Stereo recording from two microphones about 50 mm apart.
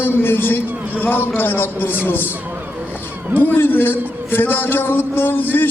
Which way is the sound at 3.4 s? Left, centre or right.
Left.